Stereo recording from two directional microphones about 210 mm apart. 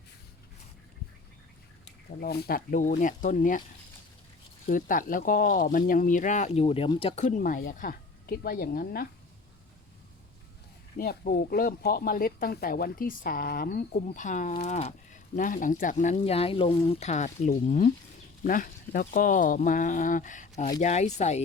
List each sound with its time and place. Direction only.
1.8 s speech: 50° left (ahead or behind)
4.6 s speech: 40° left (ahead or behind)
10.9 s speech: 45° left (ahead or behind)